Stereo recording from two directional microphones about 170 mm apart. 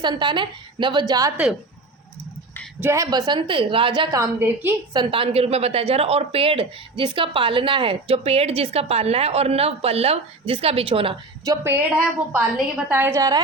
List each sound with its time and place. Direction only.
0.0 s a woman's voice: 25° right (ahead or behind)
2.8 s a woman's voice: 20° right (ahead or behind)
4.9 s speech: 30° right (ahead or behind)
11.4 s a woman's voice: 20° right (ahead or behind)